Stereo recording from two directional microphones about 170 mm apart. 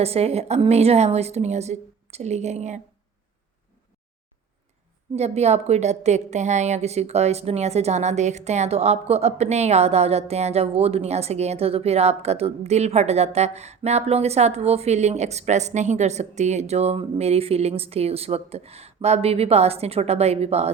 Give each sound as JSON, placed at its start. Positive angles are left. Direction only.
{"t": 0.0, "sound": "a woman's voice", "side_deg": -35}
{"t": 5.1, "sound": "a woman's voice", "side_deg": -40}